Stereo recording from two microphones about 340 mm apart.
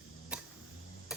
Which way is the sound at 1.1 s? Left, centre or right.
Centre.